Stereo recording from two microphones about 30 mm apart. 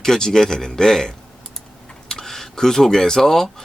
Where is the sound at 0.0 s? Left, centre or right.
Centre.